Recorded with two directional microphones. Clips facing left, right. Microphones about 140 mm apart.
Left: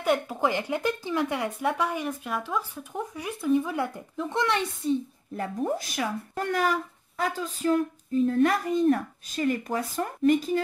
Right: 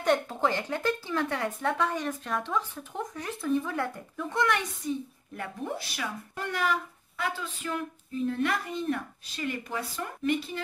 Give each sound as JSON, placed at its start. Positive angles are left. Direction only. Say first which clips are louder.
{"t": 0.0, "sound": "speech", "louder": "left 1 dB", "side_deg": 10}